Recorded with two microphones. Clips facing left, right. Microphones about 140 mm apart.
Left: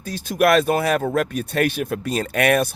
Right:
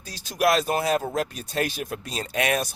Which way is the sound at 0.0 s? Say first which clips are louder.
Left 5 dB; 55° left (ahead or behind).